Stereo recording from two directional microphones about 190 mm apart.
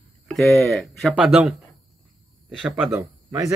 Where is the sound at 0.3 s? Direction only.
Centre (ahead or behind).